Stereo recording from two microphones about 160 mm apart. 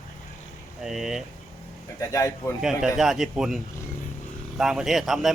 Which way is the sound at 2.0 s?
20° left (ahead or behind).